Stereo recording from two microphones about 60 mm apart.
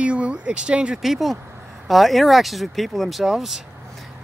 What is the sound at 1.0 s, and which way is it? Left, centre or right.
Speech, centre.